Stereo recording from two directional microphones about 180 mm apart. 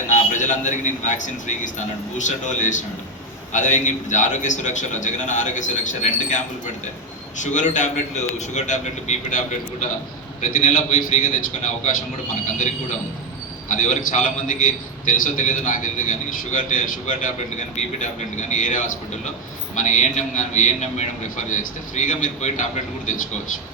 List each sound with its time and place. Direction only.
0.1 s a man's voice: 45° left (ahead or behind)
10.4 s a man's voice: 40° left (ahead or behind)